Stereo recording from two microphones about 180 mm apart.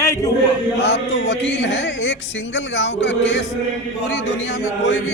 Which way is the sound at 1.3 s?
80° left.